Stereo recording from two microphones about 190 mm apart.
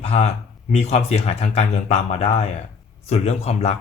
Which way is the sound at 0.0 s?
35° left (ahead or behind).